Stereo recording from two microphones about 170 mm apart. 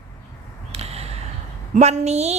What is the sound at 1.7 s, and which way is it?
Speech, 40° right (ahead or behind).